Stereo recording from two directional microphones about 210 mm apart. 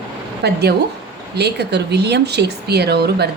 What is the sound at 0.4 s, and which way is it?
A woman's voice, 50° right (ahead or behind).